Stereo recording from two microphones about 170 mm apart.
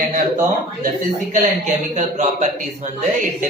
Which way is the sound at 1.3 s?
45° right (ahead or behind).